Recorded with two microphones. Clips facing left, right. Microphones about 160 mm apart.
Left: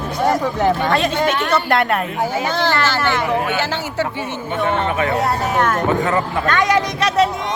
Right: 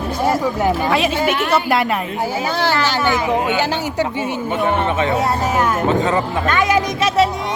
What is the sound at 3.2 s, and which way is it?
A woman's voice, 20° right (ahead or behind).